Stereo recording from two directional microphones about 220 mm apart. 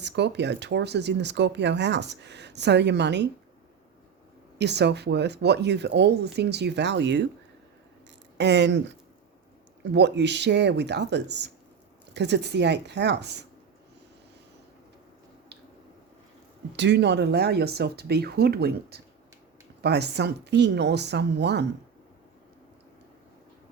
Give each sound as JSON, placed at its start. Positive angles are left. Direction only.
{"t": 0.0, "sound": "speech", "side_deg": -50}
{"t": 4.5, "sound": "speech", "side_deg": -50}
{"t": 8.4, "sound": "speech", "side_deg": -50}
{"t": 9.8, "sound": "speech", "side_deg": -50}
{"t": 16.7, "sound": "speech", "side_deg": -50}